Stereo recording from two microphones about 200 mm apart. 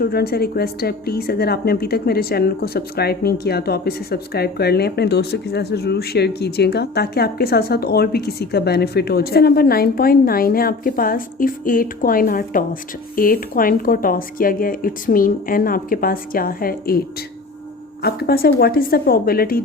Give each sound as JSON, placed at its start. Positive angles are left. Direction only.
{"t": 0.0, "sound": "a woman's voice", "side_deg": 50}
{"t": 18.0, "sound": "a woman's voice", "side_deg": 50}